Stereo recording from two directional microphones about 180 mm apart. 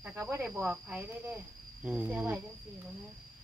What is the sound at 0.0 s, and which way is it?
Speech, 10° right (ahead or behind).